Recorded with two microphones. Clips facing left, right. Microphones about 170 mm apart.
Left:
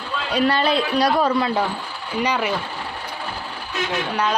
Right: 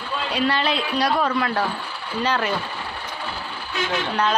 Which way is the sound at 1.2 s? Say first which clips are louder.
Left 3 dB; 20° left (ahead or behind).